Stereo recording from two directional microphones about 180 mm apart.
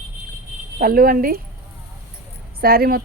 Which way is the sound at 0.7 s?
55° right (ahead or behind).